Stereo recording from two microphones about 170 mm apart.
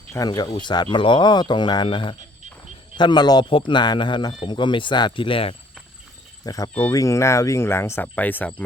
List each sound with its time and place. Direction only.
0.1 s a man's voice: 20° left (ahead or behind)
6.4 s speech: 20° left (ahead or behind)